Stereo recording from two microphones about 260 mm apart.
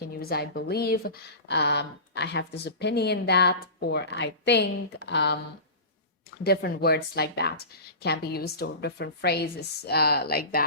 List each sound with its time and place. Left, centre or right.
0.2 s speech: left
6.4 s speech: left